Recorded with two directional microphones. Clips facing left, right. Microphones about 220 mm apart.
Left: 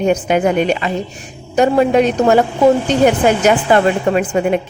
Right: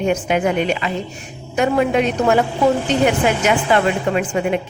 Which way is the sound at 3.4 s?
40° left (ahead or behind).